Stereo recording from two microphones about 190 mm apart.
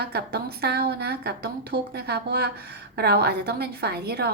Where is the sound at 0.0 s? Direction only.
55° right (ahead or behind).